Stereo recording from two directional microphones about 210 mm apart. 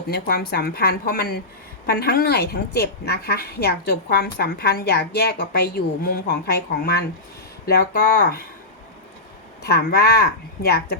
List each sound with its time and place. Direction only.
0.1 s a woman's voice: 50° left (ahead or behind)
7.6 s a woman's voice: 45° left (ahead or behind)
9.6 s a woman's voice: 50° left (ahead or behind)